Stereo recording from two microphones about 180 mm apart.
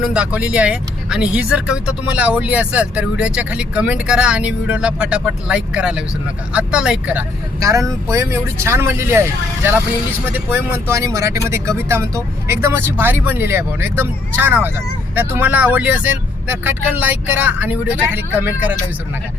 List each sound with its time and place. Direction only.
0.0 s speech: 5° right (ahead or behind)